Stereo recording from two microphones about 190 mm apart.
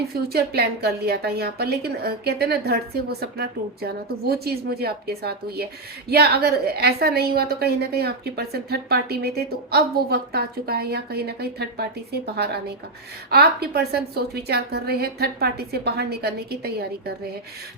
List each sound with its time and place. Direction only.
0.1 s a woman's voice: 55° right (ahead or behind)